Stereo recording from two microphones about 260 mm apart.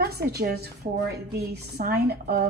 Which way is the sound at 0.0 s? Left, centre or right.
Right.